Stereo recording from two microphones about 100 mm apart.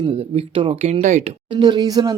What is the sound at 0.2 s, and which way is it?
Speech, 70° right (ahead or behind).